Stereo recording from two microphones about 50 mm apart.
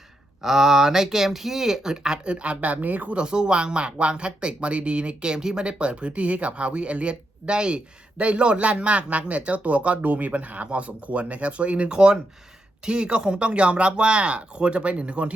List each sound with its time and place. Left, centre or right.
0.4 s speech: centre; by 3.2 s right
3.2 s speech: centre